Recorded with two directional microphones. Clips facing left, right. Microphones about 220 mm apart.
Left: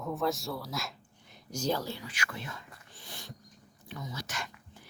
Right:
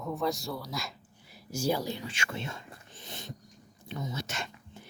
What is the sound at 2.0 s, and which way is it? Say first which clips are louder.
A woman's voice: right 3 dB; 25° right (ahead or behind).